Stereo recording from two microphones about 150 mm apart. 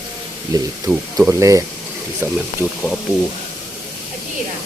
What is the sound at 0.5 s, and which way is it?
Speech, 25° right (ahead or behind).